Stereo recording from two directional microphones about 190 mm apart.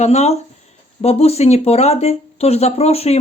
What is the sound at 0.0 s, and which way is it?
A woman's voice, 35° left (ahead or behind).